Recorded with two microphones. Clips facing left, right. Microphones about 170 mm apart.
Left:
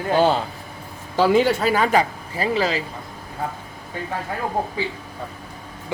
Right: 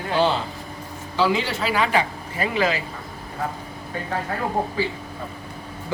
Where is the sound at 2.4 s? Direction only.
35° left (ahead or behind).